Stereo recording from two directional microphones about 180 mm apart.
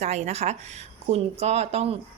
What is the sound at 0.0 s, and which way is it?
Speech, 35° right (ahead or behind).